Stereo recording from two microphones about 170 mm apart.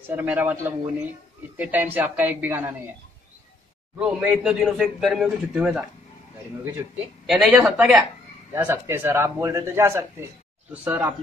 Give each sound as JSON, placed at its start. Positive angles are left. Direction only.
{"t": 0.1, "sound": "a man's voice", "side_deg": -10}
{"t": 4.0, "sound": "a man's voice", "side_deg": -5}
{"t": 7.2, "sound": "a man's voice", "side_deg": 0}